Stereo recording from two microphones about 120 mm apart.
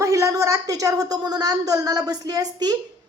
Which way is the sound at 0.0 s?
25° right (ahead or behind).